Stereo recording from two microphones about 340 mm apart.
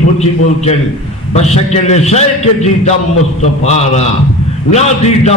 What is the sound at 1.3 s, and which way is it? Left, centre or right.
A man's voice, centre.